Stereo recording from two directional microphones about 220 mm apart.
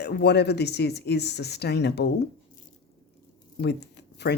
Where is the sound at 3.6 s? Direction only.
50° left (ahead or behind).